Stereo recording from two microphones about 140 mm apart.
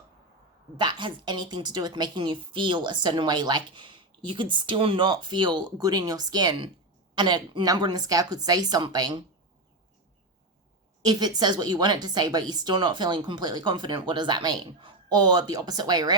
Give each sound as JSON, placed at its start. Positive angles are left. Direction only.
{"t": 0.8, "sound": "a woman's voice", "side_deg": -35}
{"t": 11.0, "sound": "speech", "side_deg": -30}